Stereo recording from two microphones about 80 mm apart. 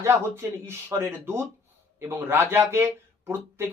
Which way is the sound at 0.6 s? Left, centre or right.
Right.